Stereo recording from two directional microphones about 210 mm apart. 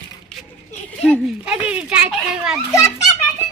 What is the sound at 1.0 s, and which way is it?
A woman's voice, 5° right (ahead or behind).